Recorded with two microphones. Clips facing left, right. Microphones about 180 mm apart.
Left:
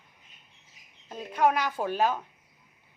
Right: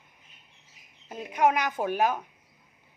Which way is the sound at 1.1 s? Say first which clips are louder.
Right 1 dB; 15° right (ahead or behind).